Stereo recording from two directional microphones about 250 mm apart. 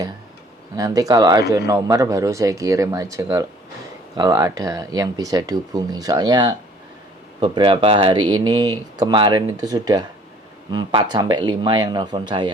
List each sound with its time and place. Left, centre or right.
0.8 s speech: centre